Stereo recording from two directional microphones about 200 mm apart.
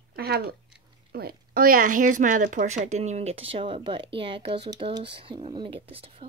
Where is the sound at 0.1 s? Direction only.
50° right (ahead or behind).